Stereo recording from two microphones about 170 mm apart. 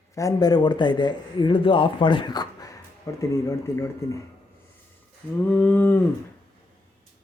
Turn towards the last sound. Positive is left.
turn(degrees=10)  # may be behind; listen again after turning